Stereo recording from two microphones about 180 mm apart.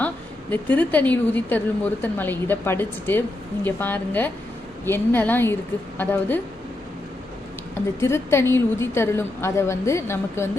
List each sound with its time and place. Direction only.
0.5 s a woman's voice: 10° left (ahead or behind)
8.0 s a woman's voice: 15° left (ahead or behind)